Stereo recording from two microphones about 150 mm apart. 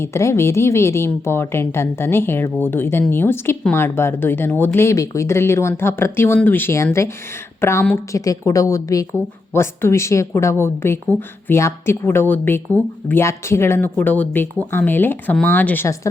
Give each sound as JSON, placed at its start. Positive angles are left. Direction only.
{"t": 0.0, "sound": "a woman's voice", "side_deg": 20}